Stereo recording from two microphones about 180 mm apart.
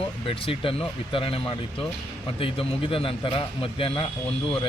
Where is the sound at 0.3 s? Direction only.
30° left (ahead or behind).